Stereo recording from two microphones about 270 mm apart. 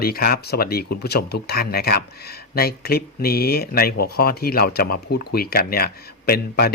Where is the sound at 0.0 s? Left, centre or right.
Left.